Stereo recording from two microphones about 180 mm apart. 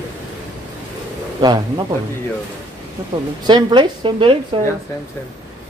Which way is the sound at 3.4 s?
25° right (ahead or behind).